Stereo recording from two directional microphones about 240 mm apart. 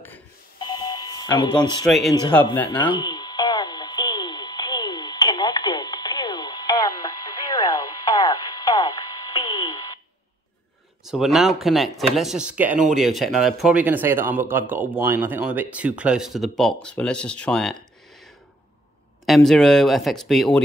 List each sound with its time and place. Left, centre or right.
0.0 s telephone dialing: centre
1.9 s speech: centre
2.8 s radio: centre
11.1 s speech: centre
19.2 s speech: centre